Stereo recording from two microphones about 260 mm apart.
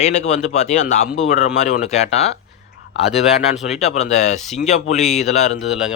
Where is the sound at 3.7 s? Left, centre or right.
Left.